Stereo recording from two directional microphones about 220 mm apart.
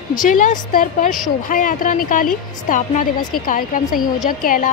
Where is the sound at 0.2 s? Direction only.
35° left (ahead or behind).